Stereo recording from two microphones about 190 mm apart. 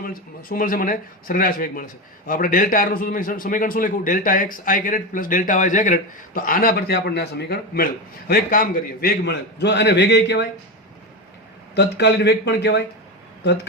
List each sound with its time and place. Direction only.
0.0 s a man's voice: 50° left (ahead or behind); by 10.4 s 65° left (ahead or behind)
11.7 s a man's voice: 65° left (ahead or behind)